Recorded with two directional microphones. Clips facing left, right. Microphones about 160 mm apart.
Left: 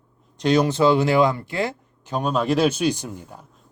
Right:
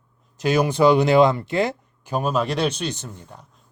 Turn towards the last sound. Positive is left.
turn(degrees=10)  # may be behind; listen again after turning